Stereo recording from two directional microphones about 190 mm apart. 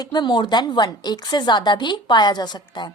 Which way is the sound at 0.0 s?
25° left (ahead or behind).